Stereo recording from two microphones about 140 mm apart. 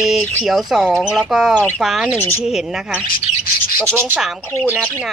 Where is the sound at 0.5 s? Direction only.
Centre (ahead or behind).